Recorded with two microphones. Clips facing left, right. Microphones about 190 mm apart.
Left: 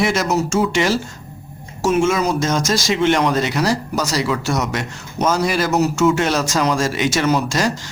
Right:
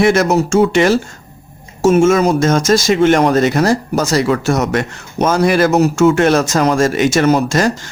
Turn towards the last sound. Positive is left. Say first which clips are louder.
# right 5 dB
turn(degrees=-50)  # may be behind; listen again after turning